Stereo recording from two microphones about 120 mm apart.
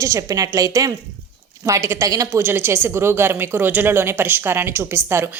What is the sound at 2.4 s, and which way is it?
Speech, 20° right (ahead or behind).